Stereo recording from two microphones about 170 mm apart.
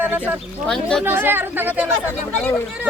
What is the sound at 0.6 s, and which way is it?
Speech, 5° left (ahead or behind).